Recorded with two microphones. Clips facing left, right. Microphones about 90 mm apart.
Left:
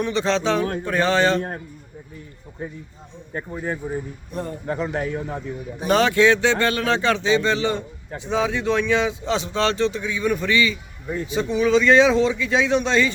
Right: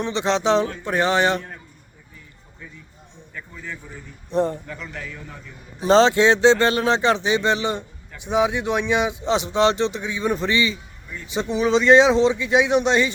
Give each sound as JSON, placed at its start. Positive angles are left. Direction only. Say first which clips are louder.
{"t": 0.0, "sound": "speech", "louder": "even", "side_deg": -20}
{"t": 1.4, "sound": "a man's voice", "louder": "left 9 dB", "side_deg": 50}
{"t": 4.3, "sound": "speech", "louder": "right 10 dB", "side_deg": -30}
{"t": 4.6, "sound": "a man's voice", "louder": "left 10 dB", "side_deg": 40}
{"t": 5.8, "sound": "speech", "louder": "right 2 dB", "side_deg": -25}